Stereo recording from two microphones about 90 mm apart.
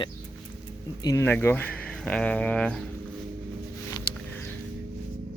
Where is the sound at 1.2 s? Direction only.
20° left (ahead or behind).